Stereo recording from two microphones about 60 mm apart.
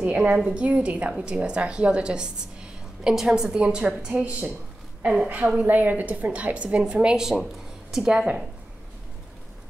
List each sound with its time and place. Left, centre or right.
0.0 s a woman's voice: right
4.2 s a woman's voice: right
5.0 s a woman's voice: centre
5.7 s a woman's voice: right